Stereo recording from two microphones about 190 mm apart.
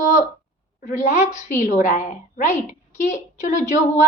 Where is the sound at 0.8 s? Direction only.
40° left (ahead or behind).